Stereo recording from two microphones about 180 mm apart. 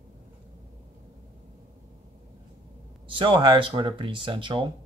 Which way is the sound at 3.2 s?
25° right (ahead or behind).